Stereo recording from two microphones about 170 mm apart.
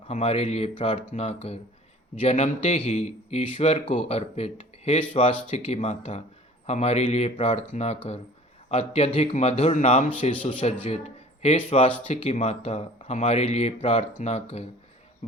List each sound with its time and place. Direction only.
0.1 s a man's voice: 40° left (ahead or behind)